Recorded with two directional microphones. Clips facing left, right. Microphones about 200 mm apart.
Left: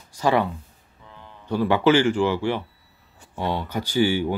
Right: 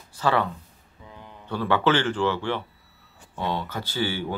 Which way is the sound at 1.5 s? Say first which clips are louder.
Left 4 dB; 10° left (ahead or behind).